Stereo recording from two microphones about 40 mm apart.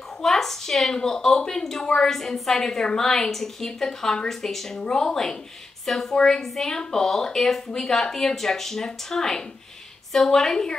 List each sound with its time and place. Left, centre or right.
0.2 s a woman's voice: centre